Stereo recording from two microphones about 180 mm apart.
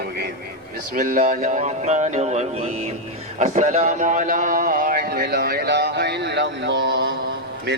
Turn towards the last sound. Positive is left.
turn(degrees=-75)  # may be behind; listen again after turning